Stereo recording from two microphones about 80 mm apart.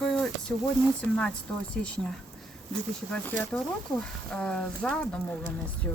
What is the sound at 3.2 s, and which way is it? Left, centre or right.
Speech, left.